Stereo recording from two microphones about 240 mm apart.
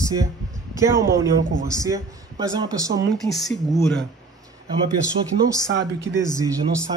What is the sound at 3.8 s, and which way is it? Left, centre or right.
Speech, centre.